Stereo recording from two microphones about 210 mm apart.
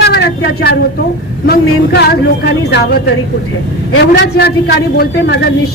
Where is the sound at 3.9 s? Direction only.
55° left (ahead or behind).